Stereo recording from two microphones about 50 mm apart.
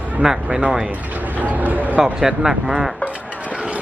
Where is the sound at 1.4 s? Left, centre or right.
Right.